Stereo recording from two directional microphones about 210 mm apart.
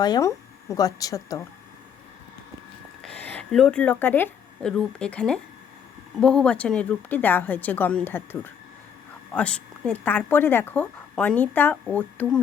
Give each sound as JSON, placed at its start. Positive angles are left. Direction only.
{"t": 0.0, "sound": "a woman's voice", "side_deg": 15}
{"t": 3.0, "sound": "a woman's voice", "side_deg": 5}